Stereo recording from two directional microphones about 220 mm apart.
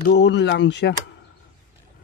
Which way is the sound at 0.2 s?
50° left (ahead or behind).